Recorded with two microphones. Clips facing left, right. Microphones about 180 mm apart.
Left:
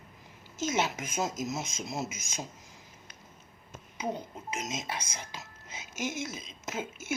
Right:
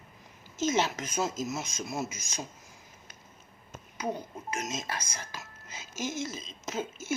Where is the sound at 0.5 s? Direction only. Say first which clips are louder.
Right 2 dB; 15° left (ahead or behind).